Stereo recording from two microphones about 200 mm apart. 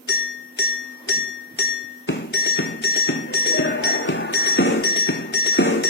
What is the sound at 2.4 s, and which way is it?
Music, 60° left (ahead or behind).